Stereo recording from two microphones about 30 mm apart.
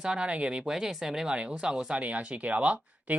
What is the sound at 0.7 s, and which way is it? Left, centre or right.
Speech, centre.